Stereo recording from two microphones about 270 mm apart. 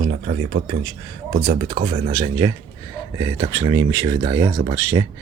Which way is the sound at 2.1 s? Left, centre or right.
Centre.